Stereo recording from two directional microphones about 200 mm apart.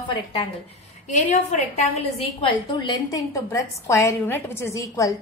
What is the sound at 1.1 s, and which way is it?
A woman's voice, 35° left (ahead or behind).